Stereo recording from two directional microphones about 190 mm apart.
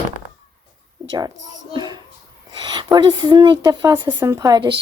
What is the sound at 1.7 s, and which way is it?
A child's voice, 20° right (ahead or behind).